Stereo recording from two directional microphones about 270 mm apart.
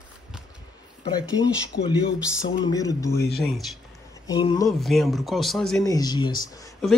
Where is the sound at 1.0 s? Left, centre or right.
Centre.